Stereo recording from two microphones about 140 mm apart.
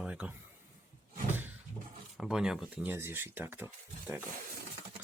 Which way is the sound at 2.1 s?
5° right (ahead or behind).